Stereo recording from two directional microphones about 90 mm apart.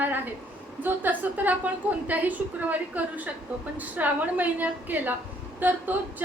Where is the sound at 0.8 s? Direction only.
20° right (ahead or behind).